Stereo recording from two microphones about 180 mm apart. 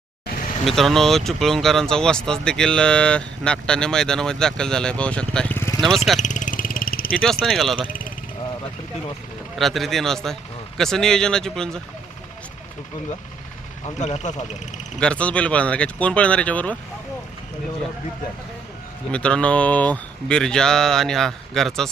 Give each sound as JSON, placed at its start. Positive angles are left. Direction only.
{"t": 0.6, "sound": "speech", "side_deg": 0}
{"t": 6.1, "sound": "vehicle", "side_deg": 45}
{"t": 7.1, "sound": "speech", "side_deg": 0}
{"t": 9.6, "sound": "speech", "side_deg": 0}
{"t": 14.0, "sound": "speech", "side_deg": 40}
{"t": 14.9, "sound": "speech", "side_deg": 5}
{"t": 19.1, "sound": "speech", "side_deg": 5}